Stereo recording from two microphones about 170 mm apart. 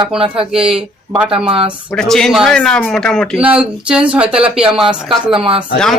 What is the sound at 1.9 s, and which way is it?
A man's voice, 5° left (ahead or behind).